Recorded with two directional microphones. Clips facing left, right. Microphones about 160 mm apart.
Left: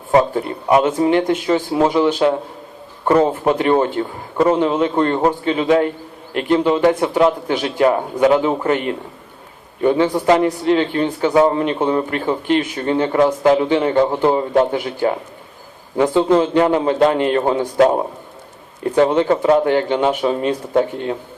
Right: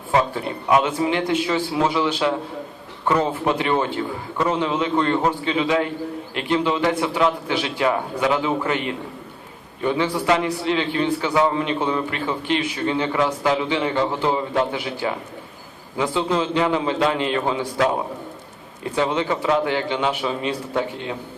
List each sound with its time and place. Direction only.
0.1 s a man's voice: 35° left (ahead or behind)
10.2 s a man's voice: 45° left (ahead or behind)